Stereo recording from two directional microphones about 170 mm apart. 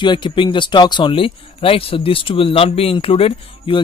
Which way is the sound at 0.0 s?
25° left (ahead or behind).